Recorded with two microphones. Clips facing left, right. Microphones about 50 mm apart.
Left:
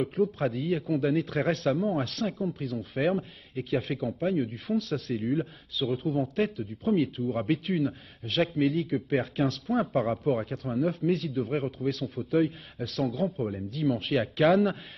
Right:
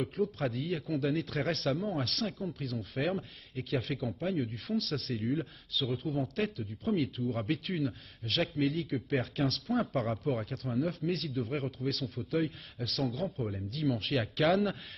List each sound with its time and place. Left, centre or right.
0.0 s speech: centre
1.1 s a man's voice: centre
5.1 s a man's voice: centre
8.5 s a man's voice: left
8.9 s a man's voice: centre
11.3 s a man's voice: centre